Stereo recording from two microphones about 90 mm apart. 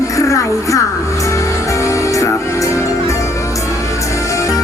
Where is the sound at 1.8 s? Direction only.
35° left (ahead or behind).